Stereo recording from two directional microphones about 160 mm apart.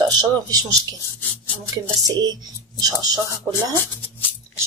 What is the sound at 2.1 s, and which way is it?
Speech, 25° right (ahead or behind).